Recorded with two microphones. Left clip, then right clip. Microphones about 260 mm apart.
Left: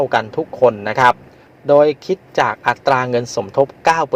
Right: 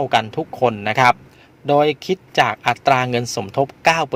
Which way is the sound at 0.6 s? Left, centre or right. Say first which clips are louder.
Left 3 dB; right.